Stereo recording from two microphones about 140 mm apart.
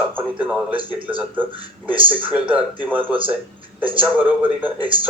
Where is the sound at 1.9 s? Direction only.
40° right (ahead or behind).